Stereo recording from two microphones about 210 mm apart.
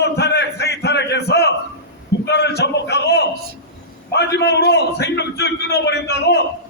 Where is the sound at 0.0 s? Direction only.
55° left (ahead or behind).